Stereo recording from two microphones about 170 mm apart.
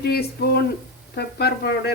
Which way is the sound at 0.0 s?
70° left (ahead or behind).